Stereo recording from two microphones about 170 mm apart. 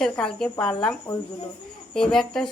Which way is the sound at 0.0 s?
5° left (ahead or behind).